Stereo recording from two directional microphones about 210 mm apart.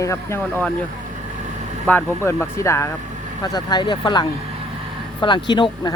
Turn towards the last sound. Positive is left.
turn(degrees=20)  # may be behind; listen again after turning